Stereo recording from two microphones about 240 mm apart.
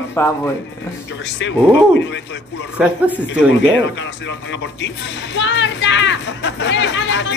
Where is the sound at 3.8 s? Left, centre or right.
Left.